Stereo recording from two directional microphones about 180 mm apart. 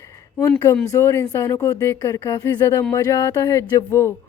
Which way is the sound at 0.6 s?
15° left (ahead or behind).